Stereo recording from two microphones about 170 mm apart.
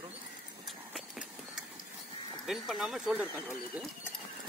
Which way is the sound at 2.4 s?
Centre (ahead or behind).